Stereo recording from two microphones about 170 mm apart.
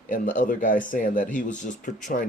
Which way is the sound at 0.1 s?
50° left (ahead or behind).